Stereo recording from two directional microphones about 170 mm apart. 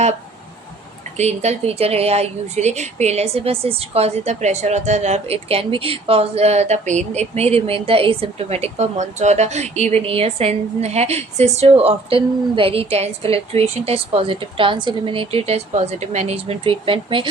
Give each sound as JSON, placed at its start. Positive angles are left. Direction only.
{"t": 1.1, "sound": "a woman's voice", "side_deg": -40}